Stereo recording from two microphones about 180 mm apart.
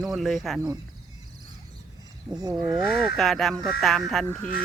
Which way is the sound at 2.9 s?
Centre (ahead or behind).